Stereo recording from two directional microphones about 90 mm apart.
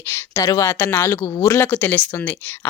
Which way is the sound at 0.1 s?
25° left (ahead or behind).